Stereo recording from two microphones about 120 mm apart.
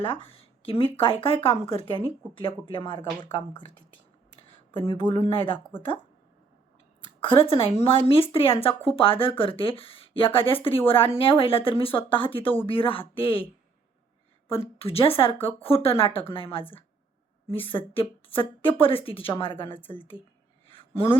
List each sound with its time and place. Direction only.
0.0 s a woman's voice: 50° left (ahead or behind)
4.8 s a woman's voice: 45° left (ahead or behind)
7.2 s a woman's voice: 50° left (ahead or behind)
14.4 s a woman's voice: 55° left (ahead or behind)
20.7 s a sound: 45° left (ahead or behind)